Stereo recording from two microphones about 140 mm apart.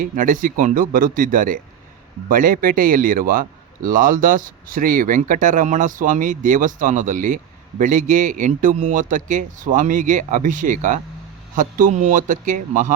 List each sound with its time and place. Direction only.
0.0 s a man's voice: 70° right (ahead or behind); by 3.4 s 90° right
3.8 s speech: 75° right (ahead or behind)